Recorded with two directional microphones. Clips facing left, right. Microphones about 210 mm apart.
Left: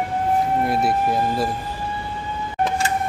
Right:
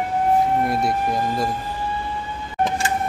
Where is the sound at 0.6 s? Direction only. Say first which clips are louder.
Left 1 dB; centre (ahead or behind).